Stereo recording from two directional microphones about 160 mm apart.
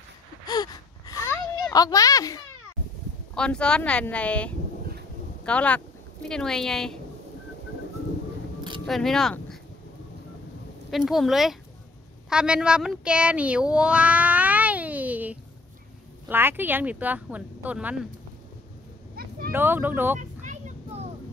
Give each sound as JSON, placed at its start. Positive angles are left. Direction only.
{"t": 0.5, "sound": "gasp", "side_deg": 25}
{"t": 3.3, "sound": "a woman's voice", "side_deg": 5}
{"t": 8.8, "sound": "speech", "side_deg": 0}
{"t": 10.9, "sound": "a woman's voice", "side_deg": 0}
{"t": 19.2, "sound": "a sound", "side_deg": -70}
{"t": 19.5, "sound": "speech", "side_deg": -15}
{"t": 20.2, "sound": "a sound", "side_deg": -50}